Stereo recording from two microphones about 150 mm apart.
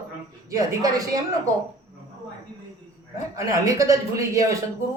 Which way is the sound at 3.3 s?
20° right (ahead or behind).